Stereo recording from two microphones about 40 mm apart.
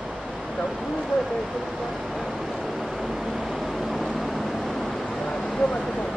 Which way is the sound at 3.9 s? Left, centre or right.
Centre.